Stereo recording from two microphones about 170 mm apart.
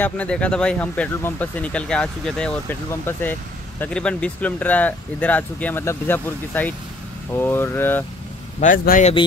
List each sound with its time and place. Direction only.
0.0 s speech: 10° left (ahead or behind)
8.5 s a man's voice: 55° left (ahead or behind)